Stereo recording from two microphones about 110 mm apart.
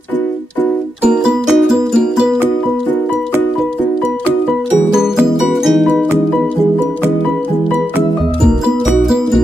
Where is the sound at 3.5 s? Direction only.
5° right (ahead or behind).